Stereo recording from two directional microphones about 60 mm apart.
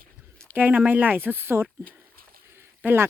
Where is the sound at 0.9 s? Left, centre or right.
Right.